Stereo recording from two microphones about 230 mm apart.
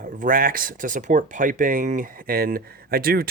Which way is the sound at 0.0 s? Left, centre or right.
Right.